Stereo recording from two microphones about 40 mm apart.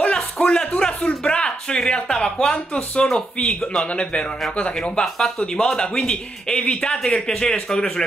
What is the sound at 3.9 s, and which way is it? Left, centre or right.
Speech, left.